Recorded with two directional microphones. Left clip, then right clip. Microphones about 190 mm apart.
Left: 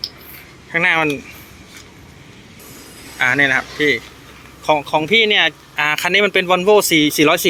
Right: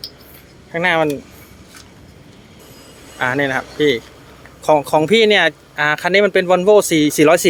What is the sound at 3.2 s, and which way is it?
Speech, 20° right (ahead or behind).